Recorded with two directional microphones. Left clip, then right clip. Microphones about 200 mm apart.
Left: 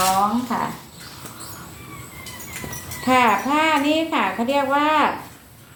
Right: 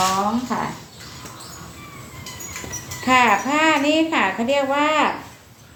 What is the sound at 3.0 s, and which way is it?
A child's voice, 15° right (ahead or behind).